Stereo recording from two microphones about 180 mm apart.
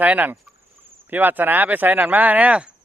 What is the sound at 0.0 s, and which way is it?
A man's voice, 10° right (ahead or behind).